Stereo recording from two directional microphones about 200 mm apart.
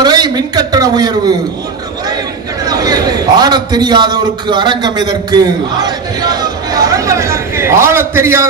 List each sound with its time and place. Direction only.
0.0 s a woman's voice: 20° right (ahead or behind)
2.6 s a man's voice: 20° right (ahead or behind)